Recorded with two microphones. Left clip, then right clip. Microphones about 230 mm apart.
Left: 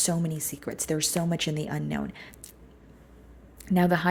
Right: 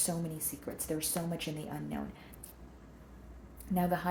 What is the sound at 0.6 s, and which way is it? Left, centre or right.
Speech, left.